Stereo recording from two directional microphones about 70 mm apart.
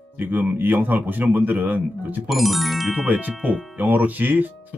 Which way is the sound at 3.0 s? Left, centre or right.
Right.